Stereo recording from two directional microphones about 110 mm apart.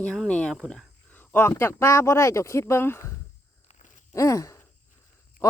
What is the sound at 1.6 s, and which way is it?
Speech, 25° left (ahead or behind).